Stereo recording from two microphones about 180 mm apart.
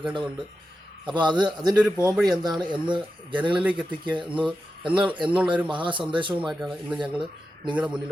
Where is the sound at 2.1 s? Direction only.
Centre (ahead or behind).